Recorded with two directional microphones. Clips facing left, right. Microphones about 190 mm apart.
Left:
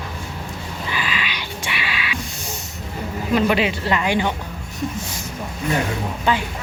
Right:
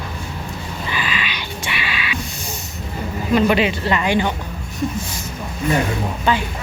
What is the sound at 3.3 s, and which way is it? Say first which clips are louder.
Speech: right 2 dB; 5° left (ahead or behind).